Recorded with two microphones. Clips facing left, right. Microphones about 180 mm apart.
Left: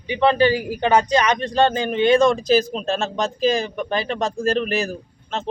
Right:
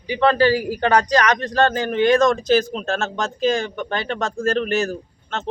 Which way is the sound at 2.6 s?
35° left (ahead or behind).